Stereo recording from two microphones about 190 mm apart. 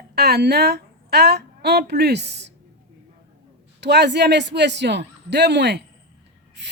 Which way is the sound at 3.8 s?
65° right (ahead or behind).